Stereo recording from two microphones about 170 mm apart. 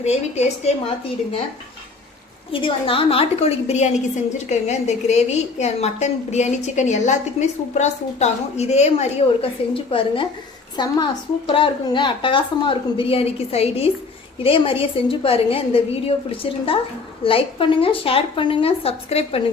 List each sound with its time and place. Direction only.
0.0 s a woman's voice: 40° left (ahead or behind)
2.5 s a woman's voice: 30° left (ahead or behind)